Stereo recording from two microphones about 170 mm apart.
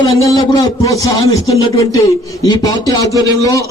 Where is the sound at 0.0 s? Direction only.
20° left (ahead or behind).